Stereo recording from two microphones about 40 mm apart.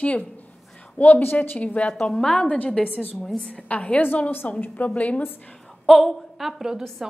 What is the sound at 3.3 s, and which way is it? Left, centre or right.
A woman's voice, left.